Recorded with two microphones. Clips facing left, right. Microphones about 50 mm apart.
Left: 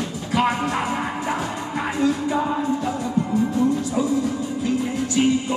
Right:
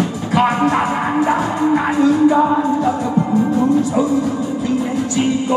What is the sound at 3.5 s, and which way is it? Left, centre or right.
Speech, right.